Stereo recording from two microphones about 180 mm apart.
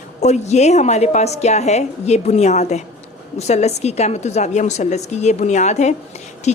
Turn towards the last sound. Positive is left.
turn(degrees=40)  # may be behind; listen again after turning